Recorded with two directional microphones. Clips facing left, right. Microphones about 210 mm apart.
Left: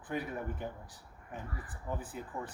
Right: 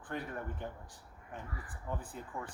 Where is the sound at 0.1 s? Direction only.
10° left (ahead or behind).